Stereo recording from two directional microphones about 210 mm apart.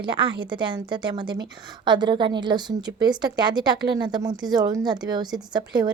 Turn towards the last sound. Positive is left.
turn(degrees=-20)  # may be behind; listen again after turning